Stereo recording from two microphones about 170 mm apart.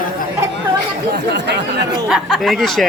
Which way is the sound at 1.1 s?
90° right.